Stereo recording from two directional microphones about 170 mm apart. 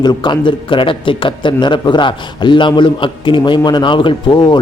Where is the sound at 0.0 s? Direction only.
25° left (ahead or behind).